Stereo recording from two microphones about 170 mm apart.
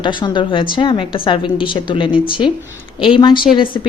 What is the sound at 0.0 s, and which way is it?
Speech, 30° left (ahead or behind).